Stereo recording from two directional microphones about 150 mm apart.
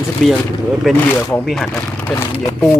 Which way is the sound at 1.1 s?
15° left (ahead or behind).